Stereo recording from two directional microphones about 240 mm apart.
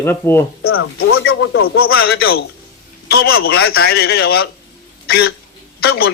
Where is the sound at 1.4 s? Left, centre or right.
Left.